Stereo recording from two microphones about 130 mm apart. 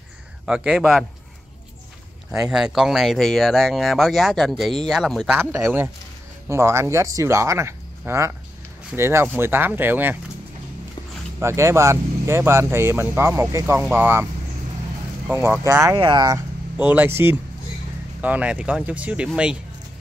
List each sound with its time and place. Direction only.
0.5 s speech: 5° right (ahead or behind)
2.4 s speech: 5° right (ahead or behind)
5.4 s speech: 20° right (ahead or behind)
11.3 s speech: 20° right (ahead or behind)
15.2 s speech: 15° right (ahead or behind)
16.0 s speech: 35° right (ahead or behind)
16.7 s speech: 10° right (ahead or behind)